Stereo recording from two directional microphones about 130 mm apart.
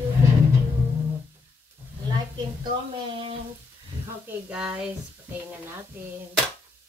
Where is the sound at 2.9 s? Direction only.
45° right (ahead or behind).